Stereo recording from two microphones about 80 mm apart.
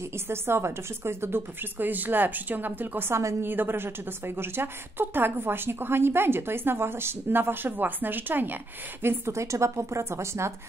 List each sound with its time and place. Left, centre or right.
0.0 s a woman's voice: right